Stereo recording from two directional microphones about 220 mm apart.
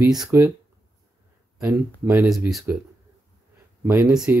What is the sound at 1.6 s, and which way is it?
Speech, 5° right (ahead or behind).